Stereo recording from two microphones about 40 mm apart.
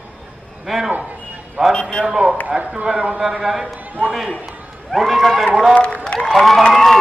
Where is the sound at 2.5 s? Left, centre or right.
Right.